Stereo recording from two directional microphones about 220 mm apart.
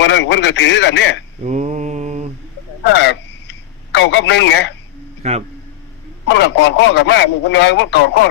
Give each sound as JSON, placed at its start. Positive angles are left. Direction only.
{"t": 0.0, "sound": "speech", "side_deg": 55}
{"t": 1.5, "sound": "mantra", "side_deg": -30}
{"t": 2.9, "sound": "a sound", "side_deg": 55}
{"t": 3.9, "sound": "speech", "side_deg": 55}
{"t": 5.2, "sound": "speech", "side_deg": -30}
{"t": 6.2, "sound": "speech", "side_deg": 50}